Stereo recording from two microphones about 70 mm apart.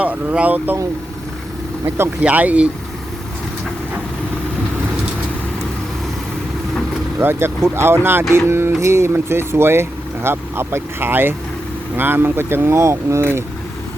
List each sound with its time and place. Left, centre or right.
0.0 s speech: centre
2.2 s speech: right
7.2 s speech: right